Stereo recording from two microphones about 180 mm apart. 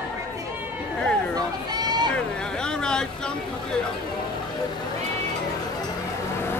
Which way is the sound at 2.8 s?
5° left (ahead or behind).